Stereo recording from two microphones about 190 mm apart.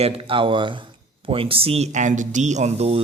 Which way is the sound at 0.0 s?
30° right (ahead or behind).